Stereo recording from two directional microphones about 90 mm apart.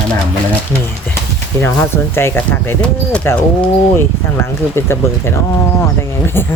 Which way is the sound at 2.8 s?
10° left (ahead or behind).